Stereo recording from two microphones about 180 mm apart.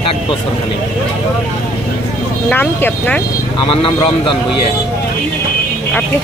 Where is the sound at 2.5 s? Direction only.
10° left (ahead or behind).